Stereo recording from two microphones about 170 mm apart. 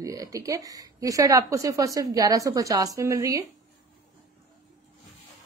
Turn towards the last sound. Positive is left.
turn(degrees=-20)  # may be behind; listen again after turning